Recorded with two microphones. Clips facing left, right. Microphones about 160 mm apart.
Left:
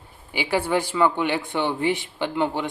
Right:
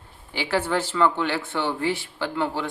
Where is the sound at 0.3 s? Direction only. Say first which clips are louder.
Left 2 dB; 10° left (ahead or behind).